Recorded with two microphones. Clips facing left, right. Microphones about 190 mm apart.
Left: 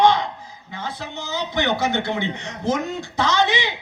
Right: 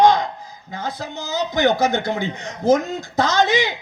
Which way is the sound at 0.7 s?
40° right (ahead or behind).